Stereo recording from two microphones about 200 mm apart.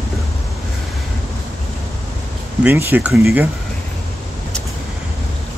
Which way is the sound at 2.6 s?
10° right (ahead or behind).